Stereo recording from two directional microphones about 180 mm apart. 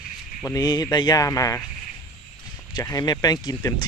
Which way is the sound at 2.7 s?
20° left (ahead or behind).